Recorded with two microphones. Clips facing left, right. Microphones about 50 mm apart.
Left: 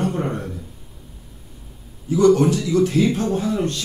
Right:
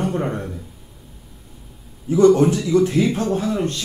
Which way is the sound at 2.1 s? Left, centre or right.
Right.